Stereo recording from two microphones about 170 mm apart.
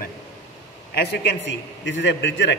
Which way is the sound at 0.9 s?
85° left.